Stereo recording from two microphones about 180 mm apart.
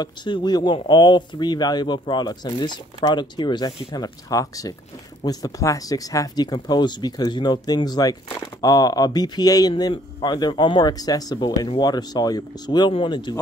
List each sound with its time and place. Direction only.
0.0 s speech: 25° left (ahead or behind)